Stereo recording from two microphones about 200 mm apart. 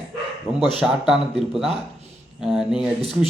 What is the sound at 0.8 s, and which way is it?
Speech, centre (ahead or behind).